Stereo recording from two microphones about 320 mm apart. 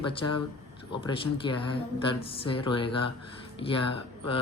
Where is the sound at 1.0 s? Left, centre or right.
Centre.